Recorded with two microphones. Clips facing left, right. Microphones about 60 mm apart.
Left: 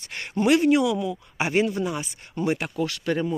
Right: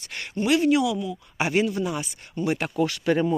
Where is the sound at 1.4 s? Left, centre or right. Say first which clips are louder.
Even; left.